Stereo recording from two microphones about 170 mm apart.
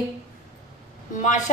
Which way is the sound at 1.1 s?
50° left (ahead or behind).